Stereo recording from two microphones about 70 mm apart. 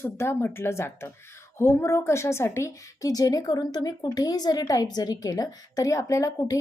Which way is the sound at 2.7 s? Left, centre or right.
Left.